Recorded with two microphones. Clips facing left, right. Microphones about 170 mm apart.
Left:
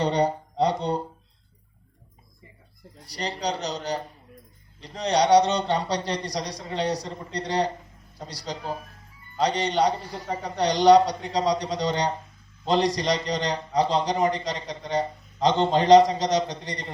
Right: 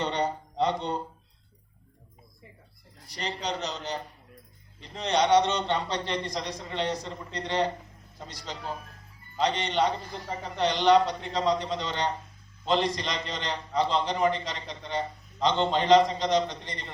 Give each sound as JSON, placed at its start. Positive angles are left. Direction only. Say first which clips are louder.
{"t": 0.0, "sound": "speech", "louder": "left 6 dB", "side_deg": 35}
{"t": 3.1, "sound": "a man's voice", "louder": "left 4 dB", "side_deg": 35}